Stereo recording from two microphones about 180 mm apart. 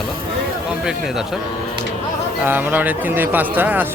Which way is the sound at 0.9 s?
5° right (ahead or behind).